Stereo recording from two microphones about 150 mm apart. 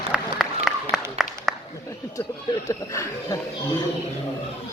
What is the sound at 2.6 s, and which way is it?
Speech, 20° left (ahead or behind).